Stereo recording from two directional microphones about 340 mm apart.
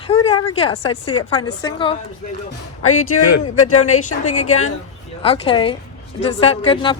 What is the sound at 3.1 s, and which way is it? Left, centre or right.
Speech, left.